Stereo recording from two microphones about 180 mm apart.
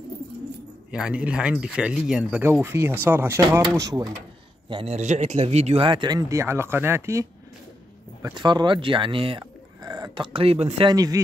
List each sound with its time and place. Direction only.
0.9 s speech: 5° right (ahead or behind)
4.6 s speech: 30° right (ahead or behind)
10.9 s speech: 20° right (ahead or behind)